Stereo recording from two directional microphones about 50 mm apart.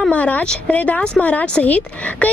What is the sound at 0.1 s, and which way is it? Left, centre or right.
Speech, left.